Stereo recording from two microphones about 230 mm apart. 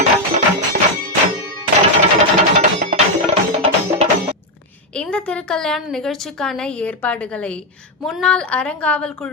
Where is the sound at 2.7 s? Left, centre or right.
Right.